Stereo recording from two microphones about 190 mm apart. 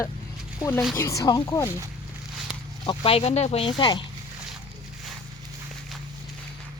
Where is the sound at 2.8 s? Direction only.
25° left (ahead or behind).